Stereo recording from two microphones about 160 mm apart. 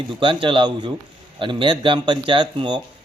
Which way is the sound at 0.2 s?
30° right (ahead or behind).